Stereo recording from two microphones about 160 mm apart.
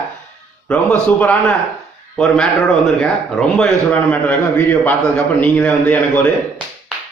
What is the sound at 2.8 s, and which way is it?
A man's voice, centre (ahead or behind).